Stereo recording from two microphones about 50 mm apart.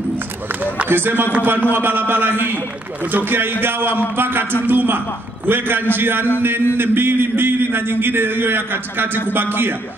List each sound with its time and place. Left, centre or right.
0.8 s a man's voice: right